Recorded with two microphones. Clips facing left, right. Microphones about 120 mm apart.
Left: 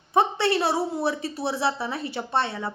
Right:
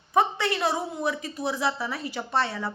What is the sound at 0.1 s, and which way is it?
A woman's voice, 30° left (ahead or behind).